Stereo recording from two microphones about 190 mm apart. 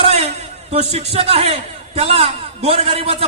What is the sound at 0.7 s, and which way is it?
A man's voice, 35° right (ahead or behind).